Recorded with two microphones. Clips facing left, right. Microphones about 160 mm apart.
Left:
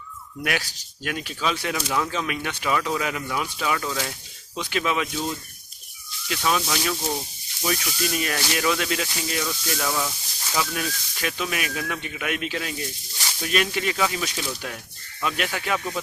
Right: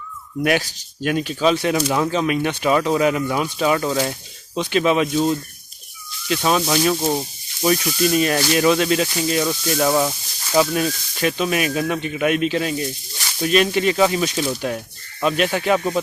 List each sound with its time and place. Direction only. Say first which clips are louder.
1.0 s speech: right 9 dB; 30° right (ahead or behind)